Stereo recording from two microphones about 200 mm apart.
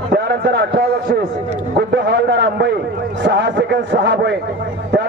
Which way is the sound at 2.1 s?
60° right (ahead or behind).